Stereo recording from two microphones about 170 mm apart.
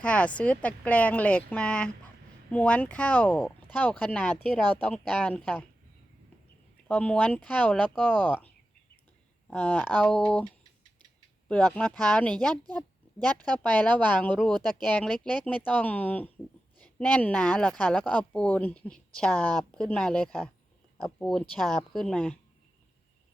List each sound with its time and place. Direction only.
0.0 s speech: 5° left (ahead or behind)
6.8 s speech: 5° left (ahead or behind)
14.5 s speech: 25° right (ahead or behind)
14.9 s speech: 5° left (ahead or behind)